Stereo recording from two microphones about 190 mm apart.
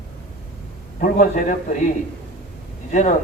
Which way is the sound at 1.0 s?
40° left (ahead or behind).